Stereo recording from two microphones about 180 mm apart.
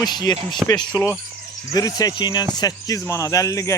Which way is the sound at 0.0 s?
20° left (ahead or behind).